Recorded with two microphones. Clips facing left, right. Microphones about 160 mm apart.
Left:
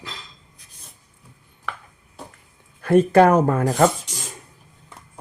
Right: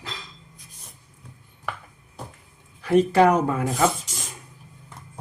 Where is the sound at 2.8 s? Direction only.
50° left (ahead or behind).